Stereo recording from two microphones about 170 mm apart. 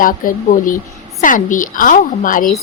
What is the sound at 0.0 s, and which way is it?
A woman's voice, 55° left (ahead or behind).